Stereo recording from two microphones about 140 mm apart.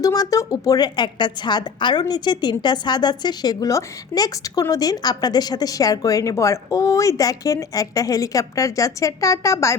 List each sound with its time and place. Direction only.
0.0 s a woman's voice: 25° left (ahead or behind)